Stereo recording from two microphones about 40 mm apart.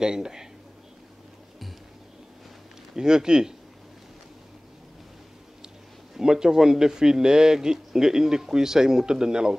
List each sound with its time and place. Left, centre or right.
0.0 s speech: centre
3.0 s speech: centre
6.1 s speech: centre